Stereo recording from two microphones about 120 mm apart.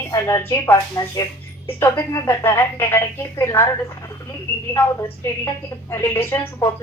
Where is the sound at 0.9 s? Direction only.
30° left (ahead or behind).